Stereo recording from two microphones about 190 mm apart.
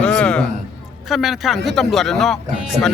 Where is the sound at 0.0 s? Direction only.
5° left (ahead or behind).